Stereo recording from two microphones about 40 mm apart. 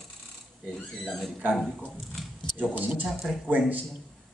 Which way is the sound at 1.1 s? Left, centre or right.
Centre.